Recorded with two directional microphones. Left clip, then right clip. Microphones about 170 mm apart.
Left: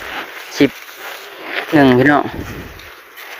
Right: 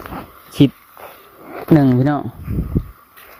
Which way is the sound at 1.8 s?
45° left (ahead or behind).